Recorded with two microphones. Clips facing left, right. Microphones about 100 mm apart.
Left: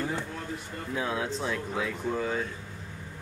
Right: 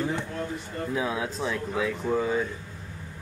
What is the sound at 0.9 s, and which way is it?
Speech, 10° right (ahead or behind).